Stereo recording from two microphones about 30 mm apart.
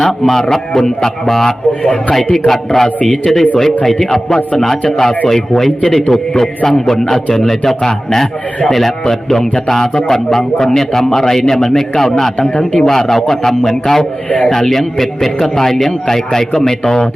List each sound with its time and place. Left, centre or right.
0.0 s a man's voice: centre
1.8 s speech: left
2.5 s a man's voice: centre
13.8 s a man's voice: centre